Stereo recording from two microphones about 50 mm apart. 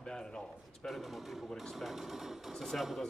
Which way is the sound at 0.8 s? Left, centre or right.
Centre.